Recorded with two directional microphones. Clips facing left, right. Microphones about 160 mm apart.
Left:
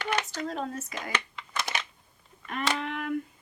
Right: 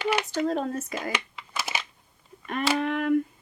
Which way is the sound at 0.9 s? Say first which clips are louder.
Right 3 dB; 5° right (ahead or behind).